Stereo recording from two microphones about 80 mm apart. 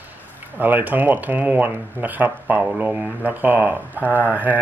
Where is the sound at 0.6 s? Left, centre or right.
Right.